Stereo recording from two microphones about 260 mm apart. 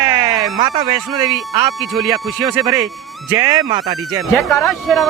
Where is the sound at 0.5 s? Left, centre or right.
Centre.